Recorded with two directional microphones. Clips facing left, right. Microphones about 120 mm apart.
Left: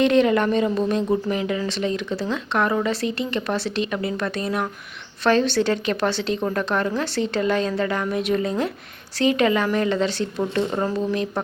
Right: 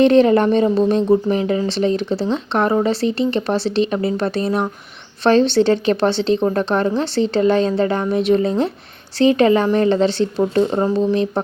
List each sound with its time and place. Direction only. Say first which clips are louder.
0.0 s speech: right 5 dB; 35° right (ahead or behind)